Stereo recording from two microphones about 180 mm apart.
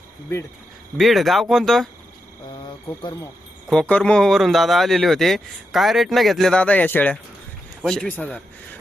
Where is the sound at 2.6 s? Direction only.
25° left (ahead or behind).